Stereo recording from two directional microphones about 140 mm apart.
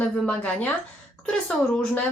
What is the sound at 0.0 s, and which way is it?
Speech, 10° left (ahead or behind).